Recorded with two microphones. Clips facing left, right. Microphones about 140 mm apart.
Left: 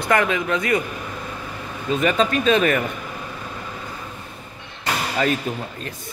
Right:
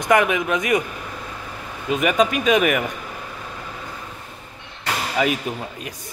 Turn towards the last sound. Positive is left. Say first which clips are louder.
# left 1 dB
turn(degrees=-10)  # may be behind; listen again after turning